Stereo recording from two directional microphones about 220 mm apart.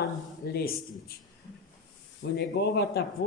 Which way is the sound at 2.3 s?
50° left (ahead or behind).